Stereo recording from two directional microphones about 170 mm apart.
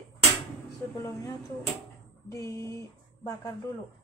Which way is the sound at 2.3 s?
20° left (ahead or behind).